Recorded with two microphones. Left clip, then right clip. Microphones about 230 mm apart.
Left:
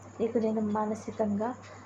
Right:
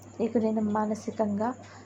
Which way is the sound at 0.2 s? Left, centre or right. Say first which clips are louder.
Right 1 dB; right.